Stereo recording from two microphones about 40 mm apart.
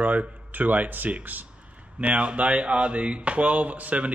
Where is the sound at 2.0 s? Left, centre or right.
Right.